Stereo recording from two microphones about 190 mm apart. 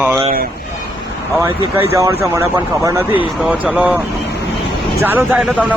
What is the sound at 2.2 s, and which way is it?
Speech, 15° right (ahead or behind).